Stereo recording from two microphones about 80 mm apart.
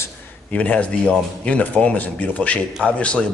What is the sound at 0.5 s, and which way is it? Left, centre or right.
Speech, centre.